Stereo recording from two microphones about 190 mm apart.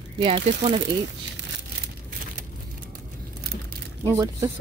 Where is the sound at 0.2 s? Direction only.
25° right (ahead or behind).